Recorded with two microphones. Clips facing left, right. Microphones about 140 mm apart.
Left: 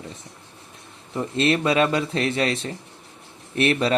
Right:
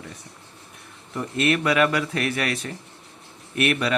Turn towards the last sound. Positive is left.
turn(degrees=30)  # may be behind; listen again after turning